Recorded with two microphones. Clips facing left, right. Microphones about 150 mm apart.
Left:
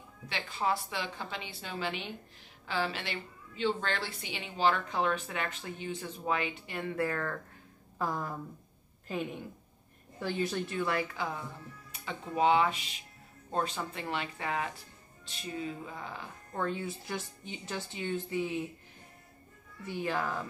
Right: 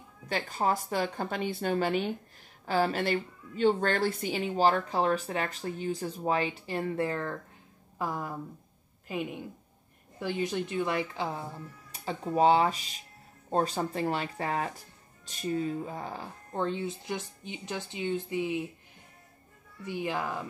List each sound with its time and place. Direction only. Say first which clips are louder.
0.3 s a woman's voice: right 4 dB; 45° right (ahead or behind)
7.0 s speech: right 2 dB; 25° right (ahead or behind)
8.0 s a woman's voice: right 1 dB; 10° right (ahead or behind); by 16.3 s 40° right (ahead or behind)
16.5 s a woman's voice: right 3 dB; 25° right (ahead or behind)
19.8 s a woman's voice: right 1 dB; 15° right (ahead or behind)